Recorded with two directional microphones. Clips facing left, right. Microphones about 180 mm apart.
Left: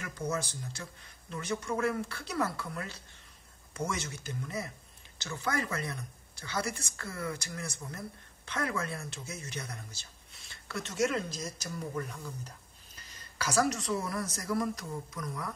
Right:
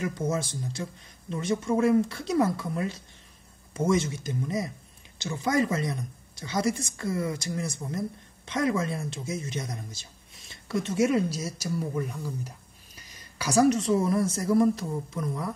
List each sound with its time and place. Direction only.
0.0 s speech: 25° right (ahead or behind)